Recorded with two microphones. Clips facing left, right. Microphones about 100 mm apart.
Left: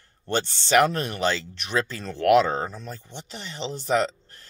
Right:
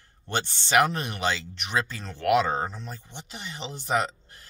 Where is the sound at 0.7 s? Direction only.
15° right (ahead or behind).